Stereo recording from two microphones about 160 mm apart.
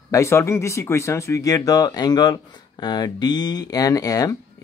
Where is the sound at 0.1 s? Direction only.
15° left (ahead or behind).